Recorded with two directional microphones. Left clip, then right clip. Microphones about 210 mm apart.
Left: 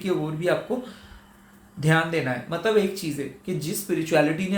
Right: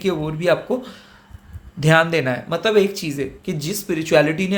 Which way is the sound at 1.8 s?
45° right (ahead or behind).